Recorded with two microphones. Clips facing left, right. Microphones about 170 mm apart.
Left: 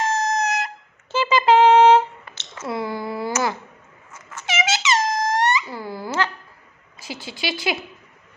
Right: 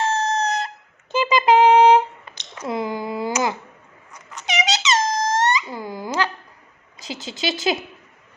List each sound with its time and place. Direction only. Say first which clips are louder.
0.0 s a sound: even; 30° right (ahead or behind)
1.1 s music: even; 15° right (ahead or behind)
4.1 s squeak: right 1 dB; 15° right (ahead or behind)
7.0 s speech: right 2 dB; 20° right (ahead or behind)